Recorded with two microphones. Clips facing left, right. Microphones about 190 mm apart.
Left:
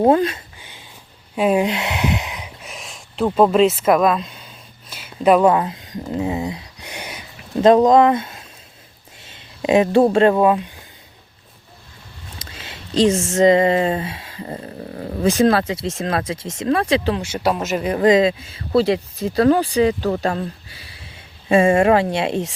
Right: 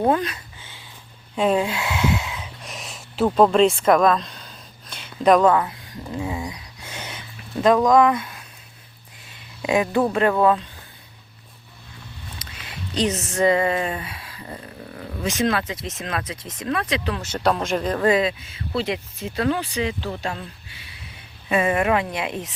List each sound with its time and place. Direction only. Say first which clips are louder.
0.0 s speech: left 6 dB; 25° left (ahead or behind)
1.4 s speech: left 3 dB; 10° left (ahead or behind)
1.6 s speech: left 2 dB; 20° left (ahead or behind)
2.6 s a sound: even; centre (ahead or behind)
5.5 s a sound: left 2 dB; 20° left (ahead or behind)
7.6 s speech: left 4 dB; 25° left (ahead or behind)
9.6 s speech: left 6 dB; 25° left (ahead or behind)
12.4 s a sound: even; 25° left (ahead or behind)
13.1 s speech: left 5 dB; 25° left (ahead or behind)
17.2 s speech: left 1 dB; 10° left (ahead or behind)
17.9 s speech: left 7 dB; 20° left (ahead or behind)